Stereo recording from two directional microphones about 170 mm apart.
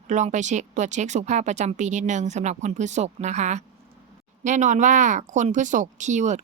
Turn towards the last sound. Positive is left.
turn(degrees=-45)  # may be behind; listen again after turning